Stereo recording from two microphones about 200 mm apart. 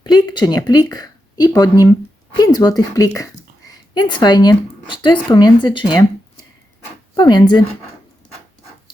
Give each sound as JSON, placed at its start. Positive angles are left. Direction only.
{"t": 0.0, "sound": "a woman's voice", "side_deg": 20}
{"t": 7.2, "sound": "speech", "side_deg": 20}